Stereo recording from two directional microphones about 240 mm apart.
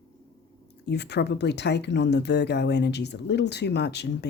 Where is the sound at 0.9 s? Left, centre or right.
Left.